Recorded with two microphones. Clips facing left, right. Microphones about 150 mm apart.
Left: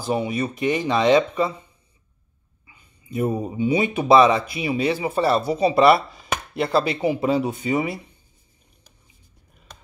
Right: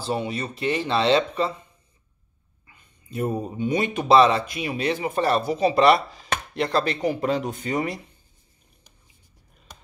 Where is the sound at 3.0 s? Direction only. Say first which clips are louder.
Left 3 dB; 10° left (ahead or behind).